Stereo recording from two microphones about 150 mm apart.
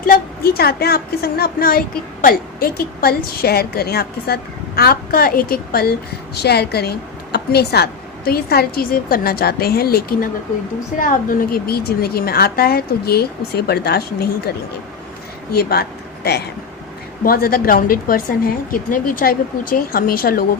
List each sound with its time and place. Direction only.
0.0 s a woman's voice: 80° left
10.9 s a woman's voice: 65° left (ahead or behind); by 14.5 s 90° left
15.5 s speech: 90° left
17.2 s a woman's voice: 80° left